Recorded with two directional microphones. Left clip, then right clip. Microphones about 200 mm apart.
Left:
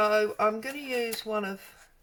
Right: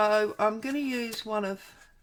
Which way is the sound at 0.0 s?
40° right (ahead or behind).